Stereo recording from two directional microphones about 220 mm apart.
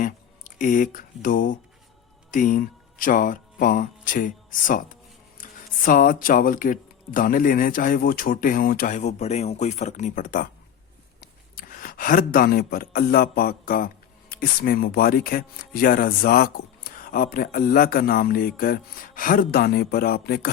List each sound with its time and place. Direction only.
0.0 s speech: 35° left (ahead or behind)